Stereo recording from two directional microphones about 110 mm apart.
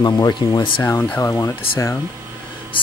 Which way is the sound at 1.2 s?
25° left (ahead or behind).